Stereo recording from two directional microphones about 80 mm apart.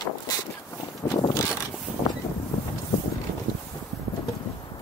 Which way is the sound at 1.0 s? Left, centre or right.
Left.